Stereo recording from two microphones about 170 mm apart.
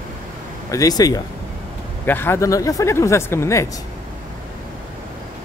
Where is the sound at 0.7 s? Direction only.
20° left (ahead or behind).